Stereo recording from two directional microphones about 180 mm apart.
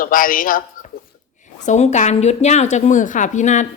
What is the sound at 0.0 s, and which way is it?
A woman's voice, 50° left (ahead or behind).